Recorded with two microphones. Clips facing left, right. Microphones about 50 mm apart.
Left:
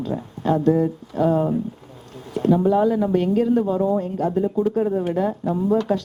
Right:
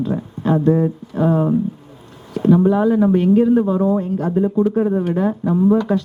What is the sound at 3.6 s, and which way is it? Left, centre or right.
Speech, centre.